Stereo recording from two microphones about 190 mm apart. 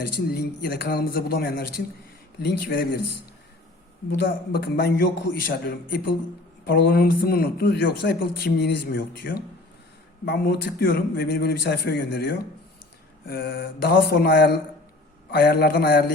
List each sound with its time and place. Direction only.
0.0 s speech: 55° left (ahead or behind)
4.3 s a man's voice: 60° left (ahead or behind)